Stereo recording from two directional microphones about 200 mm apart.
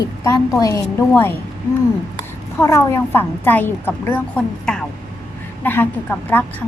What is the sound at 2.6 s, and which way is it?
A woman's voice, 15° left (ahead or behind).